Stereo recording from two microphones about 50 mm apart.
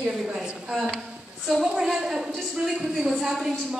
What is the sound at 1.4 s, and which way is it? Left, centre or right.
A woman's voice, centre.